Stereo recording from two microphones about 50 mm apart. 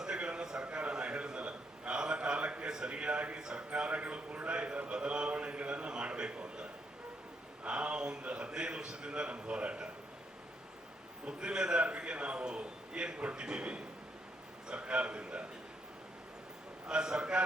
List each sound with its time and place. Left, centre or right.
0.0 s a sound: centre
11.3 s a man's voice: centre
16.8 s a man's voice: centre